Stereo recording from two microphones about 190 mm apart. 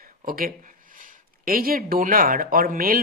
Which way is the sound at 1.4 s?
50° right (ahead or behind).